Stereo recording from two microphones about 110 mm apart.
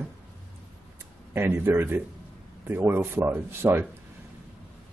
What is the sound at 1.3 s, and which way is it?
Speech, 20° right (ahead or behind).